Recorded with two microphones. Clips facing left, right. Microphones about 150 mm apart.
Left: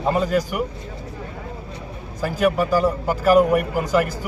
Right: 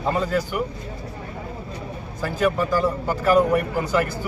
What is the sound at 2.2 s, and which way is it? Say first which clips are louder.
A man's voice: left 2 dB; 10° left (ahead or behind).